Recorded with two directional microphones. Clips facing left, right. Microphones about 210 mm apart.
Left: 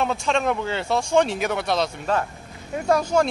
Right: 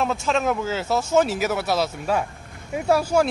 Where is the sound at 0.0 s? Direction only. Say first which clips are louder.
Even; centre (ahead or behind).